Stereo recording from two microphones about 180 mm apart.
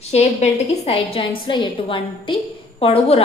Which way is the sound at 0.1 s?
35° left (ahead or behind).